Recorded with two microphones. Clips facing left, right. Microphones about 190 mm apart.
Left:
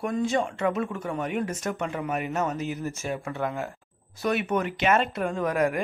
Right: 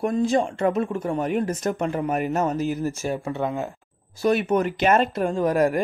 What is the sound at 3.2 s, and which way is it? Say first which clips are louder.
Speech: right 4 dB; 25° right (ahead or behind).